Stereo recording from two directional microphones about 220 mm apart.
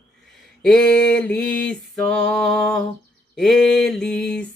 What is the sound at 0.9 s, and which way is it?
Mantra, 50° left (ahead or behind).